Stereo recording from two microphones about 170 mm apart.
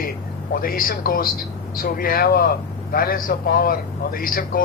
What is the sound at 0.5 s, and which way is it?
Speech, 60° left (ahead or behind).